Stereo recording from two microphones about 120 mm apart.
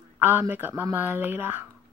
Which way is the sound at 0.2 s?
15° right (ahead or behind).